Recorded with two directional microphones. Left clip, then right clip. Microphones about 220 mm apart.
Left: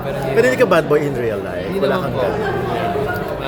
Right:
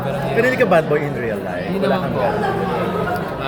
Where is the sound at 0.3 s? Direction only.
20° left (ahead or behind).